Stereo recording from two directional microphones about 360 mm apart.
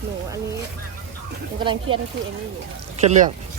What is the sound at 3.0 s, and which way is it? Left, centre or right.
Speech, centre.